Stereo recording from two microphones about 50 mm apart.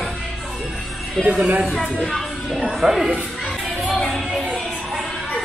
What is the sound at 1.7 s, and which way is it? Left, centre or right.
Speech, centre.